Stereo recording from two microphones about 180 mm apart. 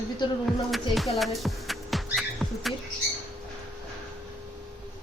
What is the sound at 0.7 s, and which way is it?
Music, centre (ahead or behind).